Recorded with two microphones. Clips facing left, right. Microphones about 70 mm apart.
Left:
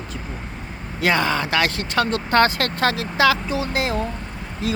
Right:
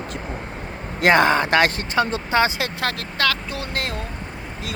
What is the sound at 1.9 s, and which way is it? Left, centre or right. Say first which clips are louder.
Speech: left 2 dB; centre.